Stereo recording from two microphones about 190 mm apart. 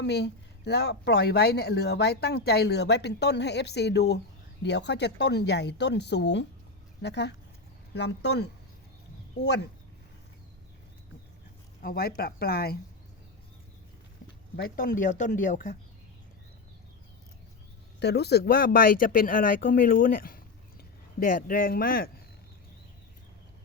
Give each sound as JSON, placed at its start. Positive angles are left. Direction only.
{"t": 0.0, "sound": "speech", "side_deg": 60}
{"t": 11.8, "sound": "speech", "side_deg": 55}
{"t": 14.5, "sound": "speech", "side_deg": 50}
{"t": 18.0, "sound": "speech", "side_deg": 60}